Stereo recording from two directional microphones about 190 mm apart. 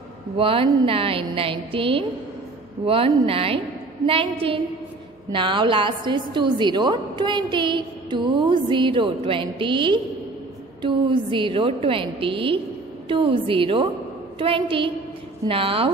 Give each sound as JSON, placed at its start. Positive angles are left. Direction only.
{"t": 0.4, "sound": "a woman's voice", "side_deg": -30}